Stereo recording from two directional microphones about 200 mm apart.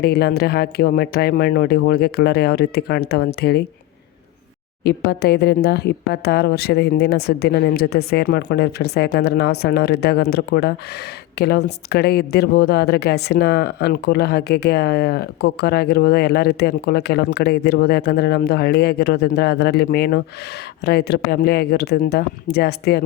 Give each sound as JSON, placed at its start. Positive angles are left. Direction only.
{"t": 0.0, "sound": "a woman's voice", "side_deg": 55}
{"t": 4.8, "sound": "a woman's voice", "side_deg": 55}